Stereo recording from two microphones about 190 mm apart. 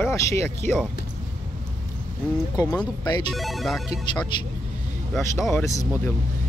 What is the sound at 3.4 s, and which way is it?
Speech, centre (ahead or behind).